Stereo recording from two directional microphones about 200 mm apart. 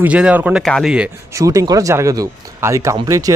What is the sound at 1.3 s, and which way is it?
Speech, 15° right (ahead or behind).